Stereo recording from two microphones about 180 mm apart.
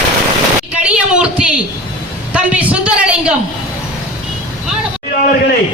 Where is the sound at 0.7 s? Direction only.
5° right (ahead or behind).